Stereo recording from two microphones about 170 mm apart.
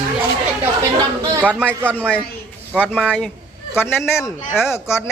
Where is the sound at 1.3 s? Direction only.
10° right (ahead or behind).